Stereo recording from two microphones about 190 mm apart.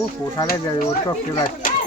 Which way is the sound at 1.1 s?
20° left (ahead or behind).